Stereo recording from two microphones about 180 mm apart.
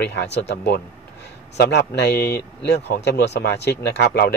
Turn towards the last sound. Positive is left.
turn(degrees=60)  # may be behind; listen again after turning